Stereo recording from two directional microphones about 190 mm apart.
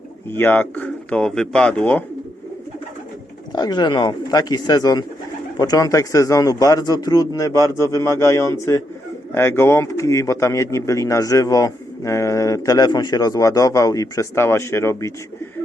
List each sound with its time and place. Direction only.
0.3 s speech: 10° left (ahead or behind)
3.5 s speech: 20° left (ahead or behind)